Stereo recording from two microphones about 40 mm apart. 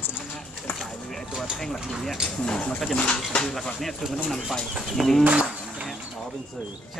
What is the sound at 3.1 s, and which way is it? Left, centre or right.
Speech, left.